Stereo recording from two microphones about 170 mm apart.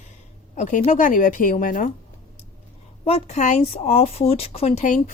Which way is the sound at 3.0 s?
40° left (ahead or behind).